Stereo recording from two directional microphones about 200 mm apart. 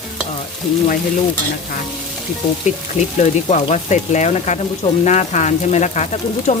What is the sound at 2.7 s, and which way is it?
Speech, 40° left (ahead or behind).